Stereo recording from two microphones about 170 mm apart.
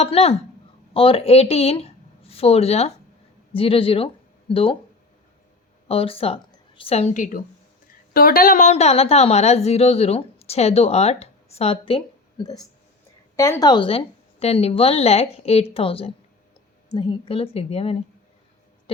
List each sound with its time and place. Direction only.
0.0 s a woman's voice: 35° left (ahead or behind)
5.9 s a woman's voice: 35° left (ahead or behind)
8.1 s a woman's voice: 60° left (ahead or behind); by 17.9 s 35° left (ahead or behind)